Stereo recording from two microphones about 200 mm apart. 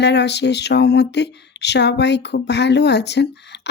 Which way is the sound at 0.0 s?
60° left (ahead or behind).